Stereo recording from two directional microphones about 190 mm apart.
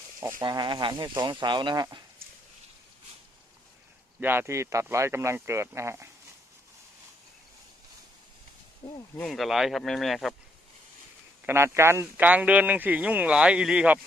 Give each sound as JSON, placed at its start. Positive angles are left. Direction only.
{"t": 0.2, "sound": "speech", "side_deg": -15}
{"t": 4.2, "sound": "speech", "side_deg": -10}
{"t": 9.1, "sound": "speech", "side_deg": 0}
{"t": 11.4, "sound": "speech", "side_deg": -15}